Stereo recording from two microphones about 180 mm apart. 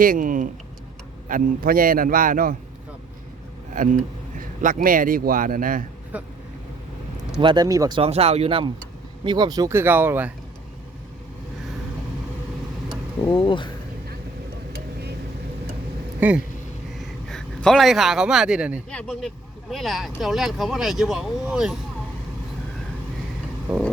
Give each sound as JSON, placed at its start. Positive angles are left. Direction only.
{"t": 0.0, "sound": "speech", "side_deg": -50}
{"t": 3.8, "sound": "speech", "side_deg": -45}
{"t": 6.1, "sound": "speech", "side_deg": -10}
{"t": 7.4, "sound": "speech", "side_deg": -25}
{"t": 13.3, "sound": "speech", "side_deg": 30}
{"t": 16.2, "sound": "speech", "side_deg": -10}
{"t": 17.2, "sound": "a man's voice", "side_deg": 5}